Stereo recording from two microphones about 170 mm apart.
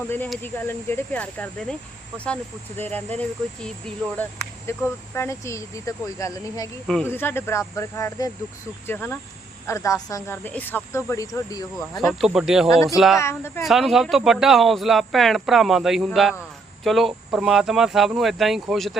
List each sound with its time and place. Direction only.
0.4 s speech: 10° left (ahead or behind)
11.7 s speech: centre (ahead or behind)
13.1 s speech: 15° left (ahead or behind)
13.6 s speech: centre (ahead or behind)